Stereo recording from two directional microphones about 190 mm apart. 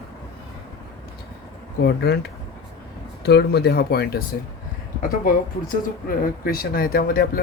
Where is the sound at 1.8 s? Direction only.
55° left (ahead or behind).